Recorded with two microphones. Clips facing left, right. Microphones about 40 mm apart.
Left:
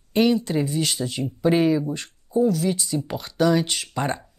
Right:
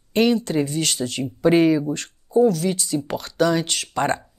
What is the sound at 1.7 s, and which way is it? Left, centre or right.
Speech, centre.